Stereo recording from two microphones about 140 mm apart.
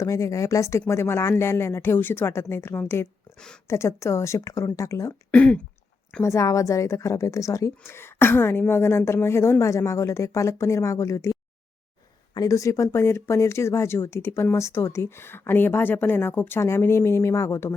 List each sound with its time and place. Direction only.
0.0 s speech: 20° left (ahead or behind)
5.3 s speech: 10° left (ahead or behind)
6.2 s speech: 20° left (ahead or behind)